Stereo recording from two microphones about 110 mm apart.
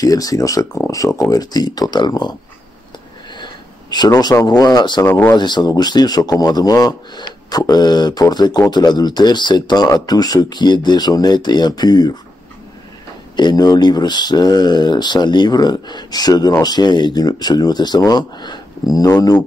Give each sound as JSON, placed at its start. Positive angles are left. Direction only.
{"t": 0.0, "sound": "speech", "side_deg": 35}
{"t": 3.9, "sound": "speech", "side_deg": 40}
{"t": 5.0, "sound": "speech", "side_deg": 20}
{"t": 5.3, "sound": "speech", "side_deg": 40}
{"t": 13.4, "sound": "speech", "side_deg": 40}